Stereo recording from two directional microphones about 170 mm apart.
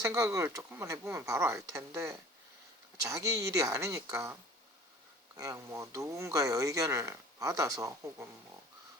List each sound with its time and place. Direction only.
0.0 s speech: 20° right (ahead or behind)
5.4 s speech: 20° right (ahead or behind)